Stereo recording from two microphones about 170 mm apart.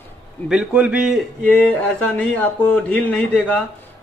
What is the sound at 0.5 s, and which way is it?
A man's voice, 5° right (ahead or behind).